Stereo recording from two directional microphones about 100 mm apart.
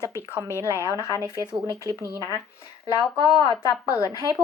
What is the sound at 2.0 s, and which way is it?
Speech, 30° left (ahead or behind).